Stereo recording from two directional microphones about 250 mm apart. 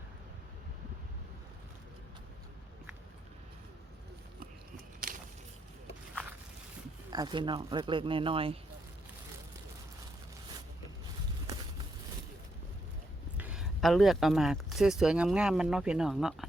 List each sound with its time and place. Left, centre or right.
7.1 s speech: centre
13.3 s speech: centre